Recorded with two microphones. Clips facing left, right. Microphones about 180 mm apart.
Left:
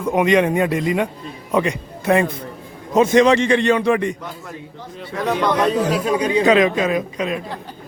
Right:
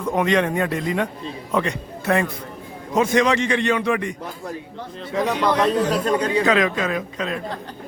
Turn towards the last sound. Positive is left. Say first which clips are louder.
# left 4 dB
turn(degrees=15)  # may be behind; listen again after turning